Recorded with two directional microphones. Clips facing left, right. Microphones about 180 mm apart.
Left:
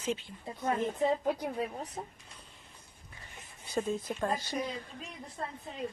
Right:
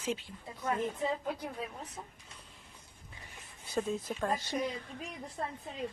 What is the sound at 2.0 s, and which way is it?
Speech, 40° left (ahead or behind).